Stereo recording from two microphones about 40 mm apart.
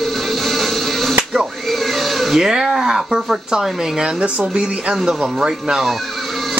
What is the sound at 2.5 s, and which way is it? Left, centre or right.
Speech, centre.